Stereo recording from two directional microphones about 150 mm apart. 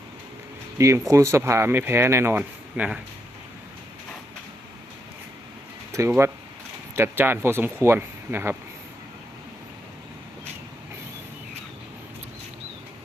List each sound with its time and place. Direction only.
0.8 s speech: 20° right (ahead or behind)
5.9 s speech: 20° right (ahead or behind)